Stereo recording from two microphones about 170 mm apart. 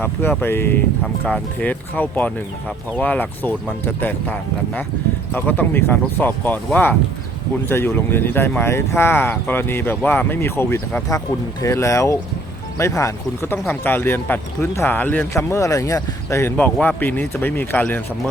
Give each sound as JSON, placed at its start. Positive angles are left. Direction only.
{"t": 0.0, "sound": "speech", "side_deg": 10}
{"t": 1.0, "sound": "speech", "side_deg": 0}
{"t": 1.6, "sound": "speech", "side_deg": 10}